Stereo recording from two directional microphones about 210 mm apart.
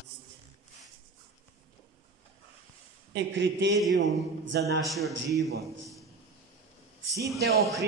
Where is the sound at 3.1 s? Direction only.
60° right (ahead or behind).